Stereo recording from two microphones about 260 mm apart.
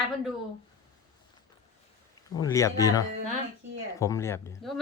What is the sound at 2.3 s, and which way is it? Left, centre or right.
Speech, centre.